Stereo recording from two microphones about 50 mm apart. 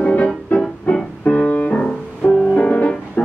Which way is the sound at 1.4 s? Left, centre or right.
Left.